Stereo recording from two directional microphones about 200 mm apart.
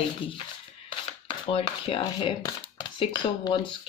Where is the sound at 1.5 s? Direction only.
25° left (ahead or behind).